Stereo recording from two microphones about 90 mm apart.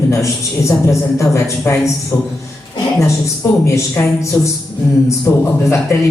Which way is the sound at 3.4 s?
30° left (ahead or behind).